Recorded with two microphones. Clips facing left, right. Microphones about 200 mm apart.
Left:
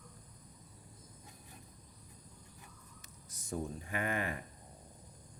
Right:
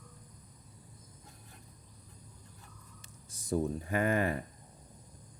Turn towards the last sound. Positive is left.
turn(degrees=-40)  # may be behind; listen again after turning